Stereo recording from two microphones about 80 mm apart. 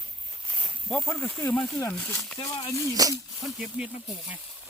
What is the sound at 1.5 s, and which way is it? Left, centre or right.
Speech, centre.